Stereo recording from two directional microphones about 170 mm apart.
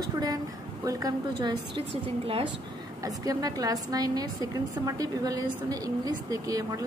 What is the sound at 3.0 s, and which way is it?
A woman's voice, 20° right (ahead or behind).